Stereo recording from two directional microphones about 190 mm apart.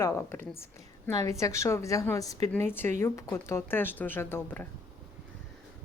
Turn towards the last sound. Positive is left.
turn(degrees=10)  # may be behind; listen again after turning